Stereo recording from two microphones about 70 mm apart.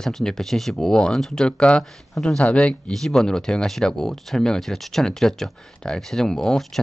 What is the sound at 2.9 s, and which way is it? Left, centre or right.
Speech, centre.